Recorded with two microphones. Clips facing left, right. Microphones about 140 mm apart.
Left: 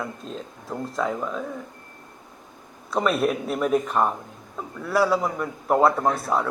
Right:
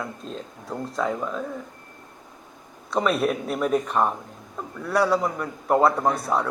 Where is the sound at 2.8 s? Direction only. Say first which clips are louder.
Even; centre (ahead or behind).